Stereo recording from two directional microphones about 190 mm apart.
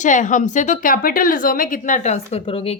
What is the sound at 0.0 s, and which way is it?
A woman's voice, 40° left (ahead or behind).